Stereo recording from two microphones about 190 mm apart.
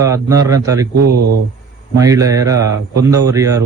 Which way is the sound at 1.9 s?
15° right (ahead or behind).